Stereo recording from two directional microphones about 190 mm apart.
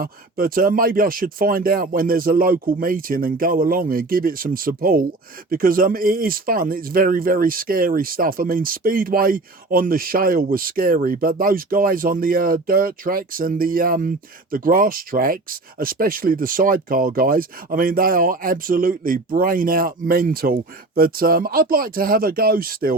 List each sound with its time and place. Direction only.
0.0 s speech: 50° right (ahead or behind)